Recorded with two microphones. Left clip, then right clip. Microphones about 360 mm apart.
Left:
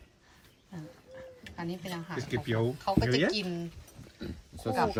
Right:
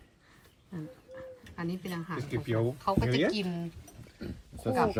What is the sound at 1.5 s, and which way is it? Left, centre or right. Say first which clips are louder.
A woman's voice: even; centre.